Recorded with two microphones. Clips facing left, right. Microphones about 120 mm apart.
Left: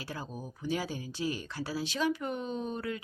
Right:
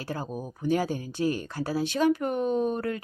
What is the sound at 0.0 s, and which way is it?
Speech, 45° right (ahead or behind).